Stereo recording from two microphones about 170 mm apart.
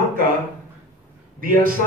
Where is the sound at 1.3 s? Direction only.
55° right (ahead or behind).